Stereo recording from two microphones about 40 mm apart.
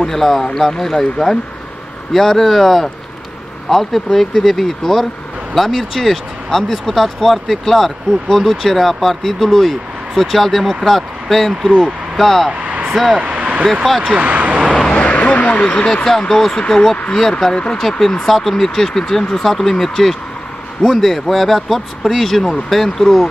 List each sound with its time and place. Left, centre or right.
0.0 s speech: centre
12.6 s vehicle: right
12.9 s speech: centre
13.2 s vehicle: right
14.0 s speech: right
14.9 s a sound: left
15.1 s speech: left
16.2 s speech: centre